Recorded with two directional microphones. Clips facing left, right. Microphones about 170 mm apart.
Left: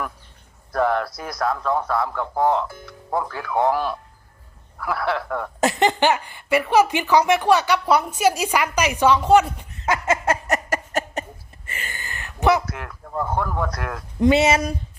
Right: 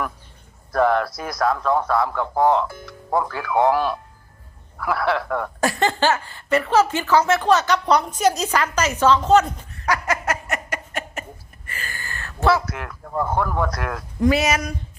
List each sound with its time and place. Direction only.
0.7 s a man's voice: 90° right
5.5 s speech: 20° left (ahead or behind)
9.7 s laughter: 20° left (ahead or behind)
10.4 s a sound: 40° left (ahead or behind); by 12.6 s 20° left (ahead or behind)
12.6 s a man's voice: 90° right
14.2 s speech: 25° left (ahead or behind)